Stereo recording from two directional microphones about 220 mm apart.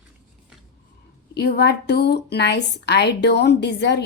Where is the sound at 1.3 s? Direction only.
50° left (ahead or behind).